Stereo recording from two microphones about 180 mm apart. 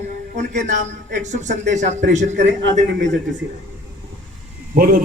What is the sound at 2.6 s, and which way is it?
Speech, 85° right.